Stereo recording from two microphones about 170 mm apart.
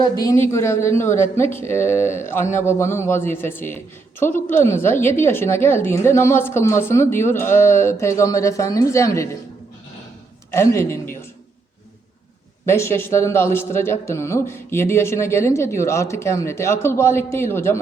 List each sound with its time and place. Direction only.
0.2 s a man's voice: 15° left (ahead or behind)
10.5 s a man's voice: 15° left (ahead or behind)
12.6 s a man's voice: 15° left (ahead or behind)